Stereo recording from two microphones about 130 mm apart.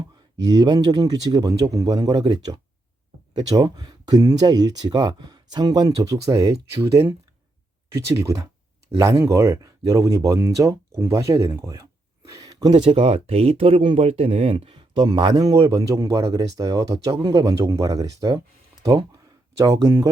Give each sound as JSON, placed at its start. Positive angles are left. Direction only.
{"t": 0.4, "sound": "speech", "side_deg": -30}
{"t": 12.4, "sound": "a sound", "side_deg": -30}
{"t": 12.8, "sound": "speech", "side_deg": -45}
{"t": 19.5, "sound": "speech", "side_deg": -25}